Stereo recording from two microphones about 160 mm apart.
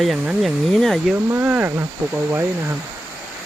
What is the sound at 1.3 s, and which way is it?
Speech, 10° right (ahead or behind).